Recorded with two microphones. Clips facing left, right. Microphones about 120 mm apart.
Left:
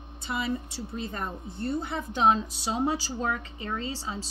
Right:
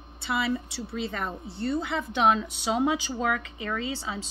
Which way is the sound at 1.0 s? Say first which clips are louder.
Right 3 dB; 90° right.